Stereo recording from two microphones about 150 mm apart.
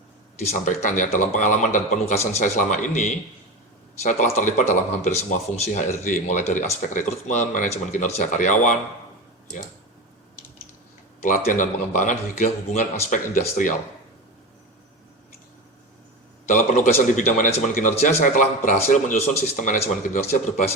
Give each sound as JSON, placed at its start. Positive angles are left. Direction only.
{"t": 0.4, "sound": "speech", "side_deg": 55}
{"t": 11.2, "sound": "speech", "side_deg": 55}
{"t": 16.5, "sound": "speech", "side_deg": 55}